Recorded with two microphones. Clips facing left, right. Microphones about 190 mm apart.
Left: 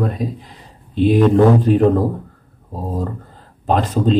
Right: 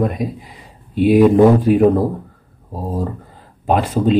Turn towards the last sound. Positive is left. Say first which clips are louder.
# right 1 dB
turn(degrees=-10)  # may be behind; listen again after turning